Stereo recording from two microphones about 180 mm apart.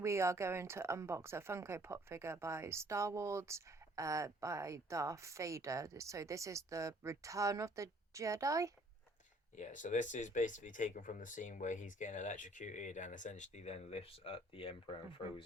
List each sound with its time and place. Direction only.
0.0 s speech: 15° right (ahead or behind)
9.6 s speech: 45° left (ahead or behind)